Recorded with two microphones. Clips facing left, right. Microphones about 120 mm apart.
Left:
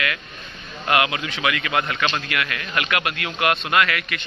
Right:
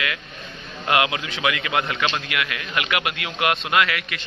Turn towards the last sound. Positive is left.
turn(degrees=-20)  # may be behind; listen again after turning